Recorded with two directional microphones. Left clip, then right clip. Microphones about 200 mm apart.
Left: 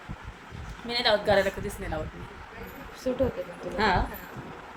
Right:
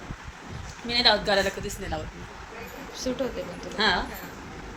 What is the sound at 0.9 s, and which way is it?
Speech, 5° right (ahead or behind).